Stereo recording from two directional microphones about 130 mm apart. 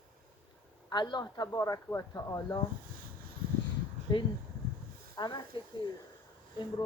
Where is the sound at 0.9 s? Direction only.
35° left (ahead or behind).